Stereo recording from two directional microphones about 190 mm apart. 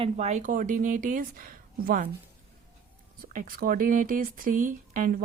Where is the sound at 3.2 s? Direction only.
50° right (ahead or behind).